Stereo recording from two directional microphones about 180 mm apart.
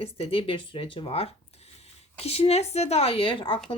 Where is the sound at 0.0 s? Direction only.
30° left (ahead or behind).